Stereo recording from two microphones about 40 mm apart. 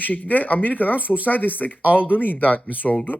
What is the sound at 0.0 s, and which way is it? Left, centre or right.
Speech, left.